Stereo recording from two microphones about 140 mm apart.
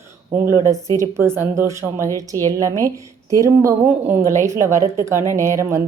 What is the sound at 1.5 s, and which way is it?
Speech, 20° right (ahead or behind).